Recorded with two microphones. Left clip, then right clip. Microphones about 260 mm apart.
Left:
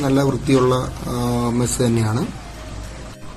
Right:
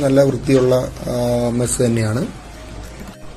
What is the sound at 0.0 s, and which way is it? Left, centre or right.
Speech, centre.